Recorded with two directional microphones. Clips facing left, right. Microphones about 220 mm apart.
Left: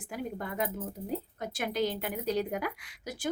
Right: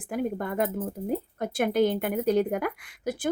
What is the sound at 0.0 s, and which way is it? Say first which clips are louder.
Speech: right 8 dB; 50° right (ahead or behind).